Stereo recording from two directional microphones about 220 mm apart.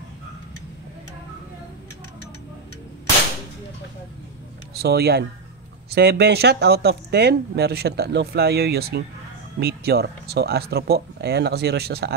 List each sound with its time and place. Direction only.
4.7 s speech: 45° right (ahead or behind)